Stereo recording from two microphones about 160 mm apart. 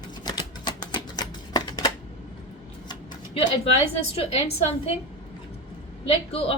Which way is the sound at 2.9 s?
25° left (ahead or behind).